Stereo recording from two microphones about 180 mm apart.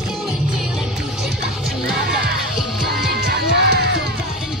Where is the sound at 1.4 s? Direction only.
5° right (ahead or behind).